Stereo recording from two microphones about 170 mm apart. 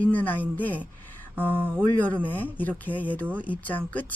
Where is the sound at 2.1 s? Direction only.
10° left (ahead or behind).